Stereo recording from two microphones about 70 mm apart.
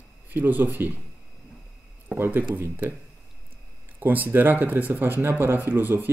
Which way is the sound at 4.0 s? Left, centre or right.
Right.